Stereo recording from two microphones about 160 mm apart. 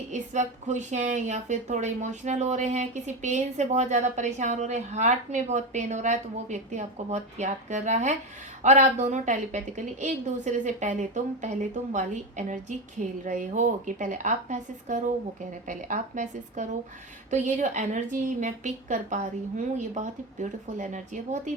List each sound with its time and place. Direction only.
0.1 s a woman's voice: 50° right (ahead or behind)